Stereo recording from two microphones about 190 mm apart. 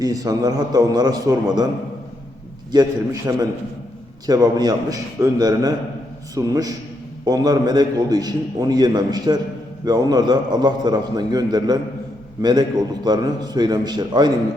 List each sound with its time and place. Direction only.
0.0 s a man's voice: 20° right (ahead or behind)
2.7 s a man's voice: 15° right (ahead or behind)